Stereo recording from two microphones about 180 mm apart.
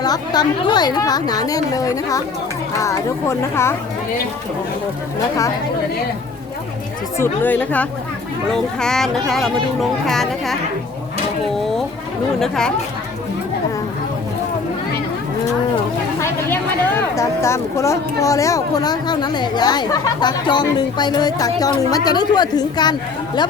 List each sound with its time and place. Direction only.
0.0 s speech: 20° left (ahead or behind)
7.2 s speech: 10° left (ahead or behind)
12.4 s speech: 5° left (ahead or behind)
17.2 s speech: 15° left (ahead or behind)